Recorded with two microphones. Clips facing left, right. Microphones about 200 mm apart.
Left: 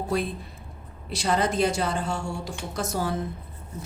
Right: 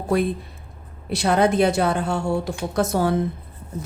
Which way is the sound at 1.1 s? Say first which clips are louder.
Right 6 dB; 60° right (ahead or behind).